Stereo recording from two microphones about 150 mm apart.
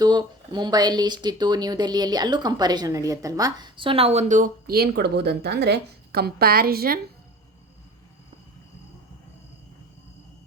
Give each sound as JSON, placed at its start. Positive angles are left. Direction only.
{"t": 0.0, "sound": "speech", "side_deg": -30}